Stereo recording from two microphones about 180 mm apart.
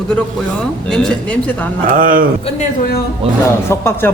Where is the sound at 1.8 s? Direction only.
50° right (ahead or behind).